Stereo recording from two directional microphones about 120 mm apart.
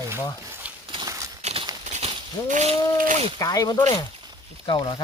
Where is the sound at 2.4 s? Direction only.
90° right.